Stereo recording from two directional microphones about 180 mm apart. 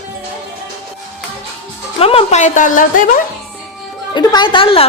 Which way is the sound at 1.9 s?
35° left (ahead or behind).